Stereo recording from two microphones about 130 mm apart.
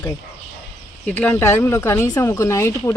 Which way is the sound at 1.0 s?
10° left (ahead or behind).